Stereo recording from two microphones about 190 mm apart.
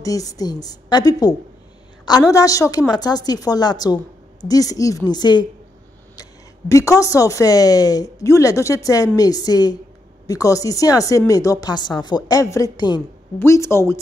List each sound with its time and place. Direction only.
0.0 s a woman's voice: 20° left (ahead or behind)
6.7 s a woman's voice: 15° left (ahead or behind)